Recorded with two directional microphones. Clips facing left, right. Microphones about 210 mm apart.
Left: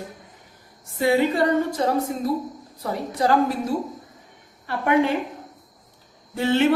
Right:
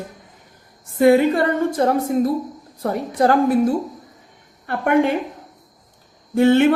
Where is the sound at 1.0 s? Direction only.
55° right (ahead or behind).